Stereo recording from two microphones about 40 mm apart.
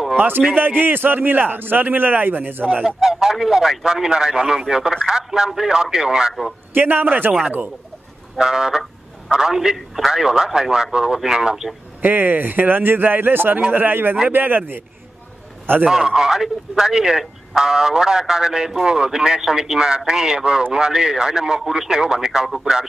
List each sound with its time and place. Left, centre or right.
0.6 s a man's voice: right
2.8 s a man's voice: centre
6.7 s a man's voice: right
8.4 s a man's voice: centre
9.8 s speech: centre
10.1 s a man's voice: centre
12.0 s a man's voice: right
13.7 s a man's voice: right
15.9 s a man's voice: centre